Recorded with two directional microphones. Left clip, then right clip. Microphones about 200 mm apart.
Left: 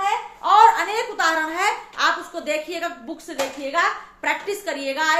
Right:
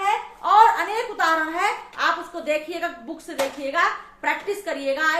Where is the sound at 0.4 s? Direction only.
10° left (ahead or behind).